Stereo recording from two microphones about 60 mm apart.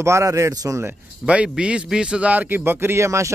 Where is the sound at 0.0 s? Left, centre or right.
Right.